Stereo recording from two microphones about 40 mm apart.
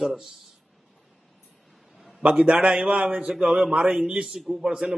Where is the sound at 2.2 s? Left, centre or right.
Right.